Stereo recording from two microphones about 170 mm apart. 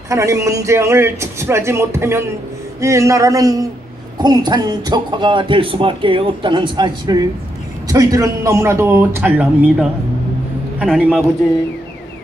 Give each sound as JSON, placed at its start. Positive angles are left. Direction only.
{"t": 0.1, "sound": "a man's voice", "side_deg": -20}
{"t": 11.0, "sound": "a man's voice", "side_deg": -10}